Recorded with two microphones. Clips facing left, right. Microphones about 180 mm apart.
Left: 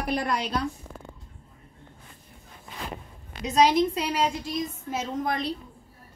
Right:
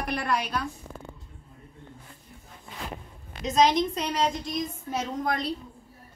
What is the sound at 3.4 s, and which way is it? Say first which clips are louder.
A woman's voice: left 1 dB; 10° left (ahead or behind).